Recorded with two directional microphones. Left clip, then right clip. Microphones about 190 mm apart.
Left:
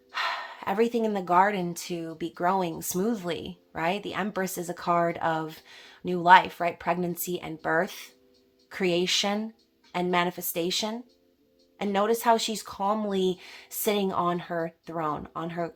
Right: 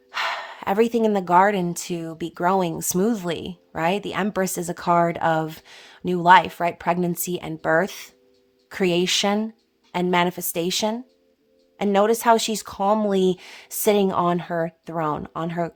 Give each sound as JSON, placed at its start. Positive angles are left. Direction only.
{"t": 0.1, "sound": "speech", "side_deg": -45}